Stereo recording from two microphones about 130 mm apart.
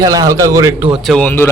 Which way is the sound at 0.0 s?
25° right (ahead or behind).